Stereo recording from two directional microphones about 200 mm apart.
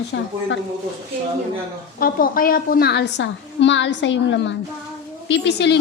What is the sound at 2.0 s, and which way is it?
A woman's voice, 45° left (ahead or behind).